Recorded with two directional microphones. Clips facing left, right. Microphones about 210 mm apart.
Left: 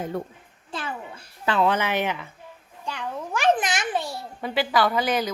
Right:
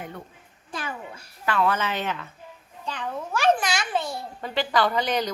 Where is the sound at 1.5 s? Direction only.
20° left (ahead or behind).